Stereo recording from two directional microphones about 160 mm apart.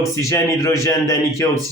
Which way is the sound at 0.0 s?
20° left (ahead or behind).